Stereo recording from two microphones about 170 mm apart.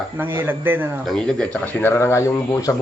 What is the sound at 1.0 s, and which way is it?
Speech, 5° left (ahead or behind).